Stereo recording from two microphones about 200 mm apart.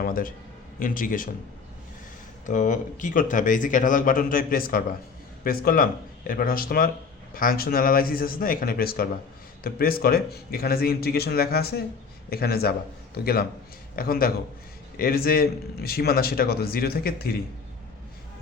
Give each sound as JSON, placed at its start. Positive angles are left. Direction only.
{"t": 0.0, "sound": "a man's voice", "side_deg": 45}
{"t": 2.5, "sound": "a man's voice", "side_deg": 40}